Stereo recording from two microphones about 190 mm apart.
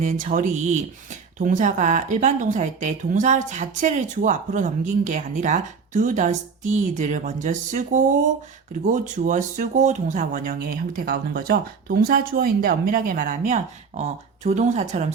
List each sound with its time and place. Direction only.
0.0 s speech: 40° right (ahead or behind)